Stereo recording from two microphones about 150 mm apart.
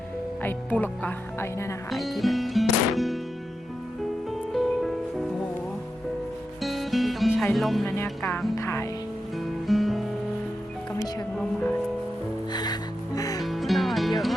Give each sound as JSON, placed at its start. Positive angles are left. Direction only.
{"t": 0.4, "sound": "speech", "side_deg": 10}
{"t": 1.9, "sound": "music", "side_deg": 0}
{"t": 4.5, "sound": "music", "side_deg": 0}
{"t": 6.6, "sound": "music", "side_deg": 0}
{"t": 8.5, "sound": "speech", "side_deg": 20}
{"t": 9.6, "sound": "music", "side_deg": 0}
{"t": 12.5, "sound": "music", "side_deg": 25}
{"t": 13.4, "sound": "music", "side_deg": 0}